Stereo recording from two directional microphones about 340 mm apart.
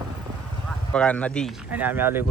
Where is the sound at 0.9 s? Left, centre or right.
Centre.